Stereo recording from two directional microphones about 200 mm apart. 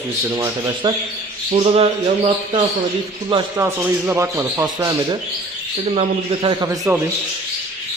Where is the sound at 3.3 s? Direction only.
25° right (ahead or behind).